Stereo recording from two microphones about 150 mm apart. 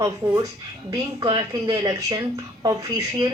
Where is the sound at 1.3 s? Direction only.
35° right (ahead or behind).